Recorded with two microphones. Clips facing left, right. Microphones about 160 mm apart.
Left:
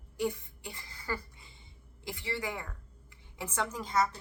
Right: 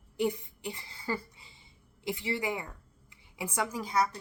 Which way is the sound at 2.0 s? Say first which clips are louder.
Right 4 dB; 20° right (ahead or behind).